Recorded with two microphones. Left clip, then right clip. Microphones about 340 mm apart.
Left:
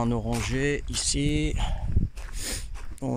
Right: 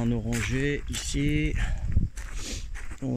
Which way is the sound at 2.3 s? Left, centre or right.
Left.